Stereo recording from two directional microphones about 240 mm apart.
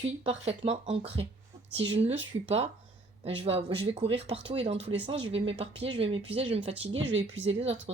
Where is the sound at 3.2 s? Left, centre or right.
Right.